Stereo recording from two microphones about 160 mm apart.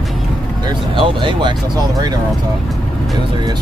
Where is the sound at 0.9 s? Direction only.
30° right (ahead or behind).